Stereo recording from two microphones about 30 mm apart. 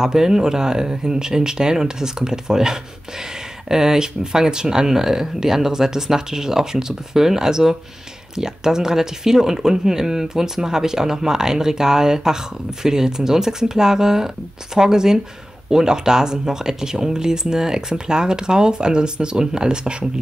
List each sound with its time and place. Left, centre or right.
0.0 s speech: centre